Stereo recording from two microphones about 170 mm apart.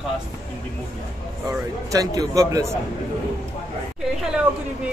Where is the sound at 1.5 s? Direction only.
20° right (ahead or behind).